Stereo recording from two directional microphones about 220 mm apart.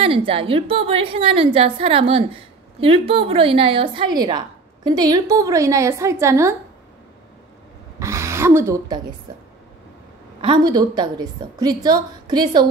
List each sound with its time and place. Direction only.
0.0 s a woman's voice: 25° right (ahead or behind)
8.0 s a sound: 15° right (ahead or behind)
10.4 s a woman's voice: 20° right (ahead or behind)